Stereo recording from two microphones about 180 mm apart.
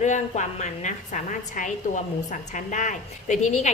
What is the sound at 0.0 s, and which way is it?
A woman's voice, 40° left (ahead or behind).